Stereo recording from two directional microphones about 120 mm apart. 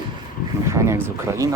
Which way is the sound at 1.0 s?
25° right (ahead or behind).